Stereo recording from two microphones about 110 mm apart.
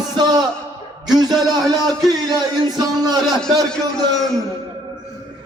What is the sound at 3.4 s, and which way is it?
Speech, 5° left (ahead or behind).